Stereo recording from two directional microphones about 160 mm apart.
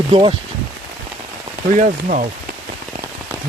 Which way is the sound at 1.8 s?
50° right (ahead or behind).